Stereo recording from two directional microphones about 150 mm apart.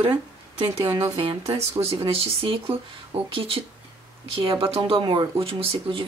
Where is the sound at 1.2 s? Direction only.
40° right (ahead or behind).